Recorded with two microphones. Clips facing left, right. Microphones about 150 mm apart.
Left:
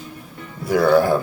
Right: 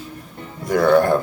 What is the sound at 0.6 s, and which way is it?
Speech, 5° left (ahead or behind).